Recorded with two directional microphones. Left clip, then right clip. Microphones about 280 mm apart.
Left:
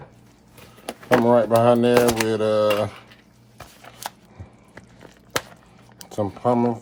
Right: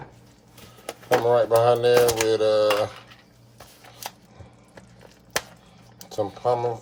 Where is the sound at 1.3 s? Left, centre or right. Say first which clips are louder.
Left 1 dB; left.